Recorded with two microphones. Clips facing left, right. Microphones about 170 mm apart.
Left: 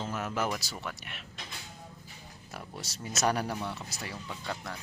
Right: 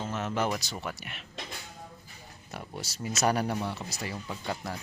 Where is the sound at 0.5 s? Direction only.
5° left (ahead or behind).